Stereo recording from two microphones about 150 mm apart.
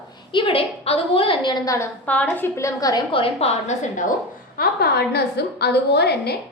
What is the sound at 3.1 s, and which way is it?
Speech, 35° left (ahead or behind).